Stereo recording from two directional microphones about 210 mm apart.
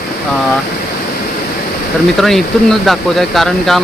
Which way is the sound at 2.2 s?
Centre (ahead or behind).